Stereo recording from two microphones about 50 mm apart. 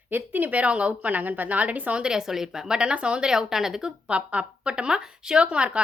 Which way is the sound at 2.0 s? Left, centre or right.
Centre.